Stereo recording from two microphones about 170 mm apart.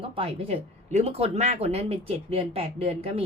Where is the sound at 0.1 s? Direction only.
35° right (ahead or behind).